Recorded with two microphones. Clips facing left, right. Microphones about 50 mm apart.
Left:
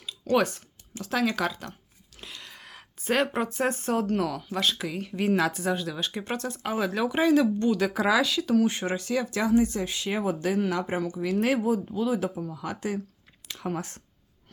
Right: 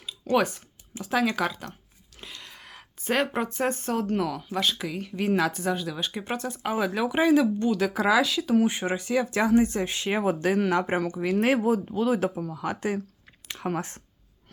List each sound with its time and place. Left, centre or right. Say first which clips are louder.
0.0 s speech: even; centre
8.6 s speech: right 1 dB; centre
9.3 s speech: right 1 dB; right
13.5 s speech: right 2 dB; right